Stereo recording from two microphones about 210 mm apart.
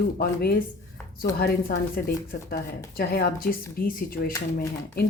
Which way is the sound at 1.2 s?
45° left (ahead or behind).